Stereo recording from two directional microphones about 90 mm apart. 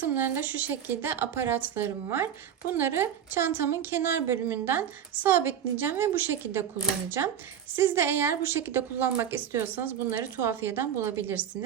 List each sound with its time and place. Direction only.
0.0 s a woman's voice: 20° right (ahead or behind)
7.8 s a woman's voice: 25° right (ahead or behind)